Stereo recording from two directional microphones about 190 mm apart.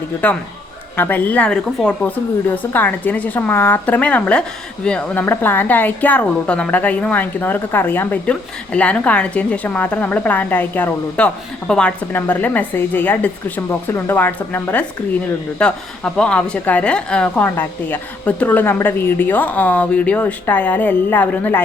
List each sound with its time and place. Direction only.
0.2 s a woman's voice: 10° left (ahead or behind)